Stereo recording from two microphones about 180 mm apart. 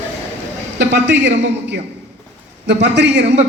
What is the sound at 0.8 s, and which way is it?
Speech, 75° right (ahead or behind).